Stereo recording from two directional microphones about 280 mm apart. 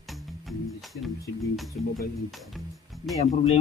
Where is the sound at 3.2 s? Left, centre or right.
Left.